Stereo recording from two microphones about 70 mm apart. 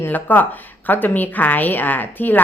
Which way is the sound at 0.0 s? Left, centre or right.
Left.